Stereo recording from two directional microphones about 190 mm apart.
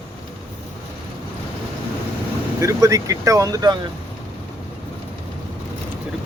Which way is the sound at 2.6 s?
15° right (ahead or behind).